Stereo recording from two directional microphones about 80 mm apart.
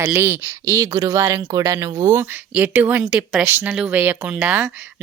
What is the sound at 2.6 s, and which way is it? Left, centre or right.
Speech, centre.